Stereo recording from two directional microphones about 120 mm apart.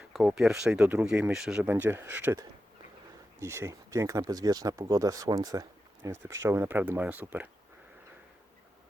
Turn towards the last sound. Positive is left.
turn(degrees=-15)  # may be behind; listen again after turning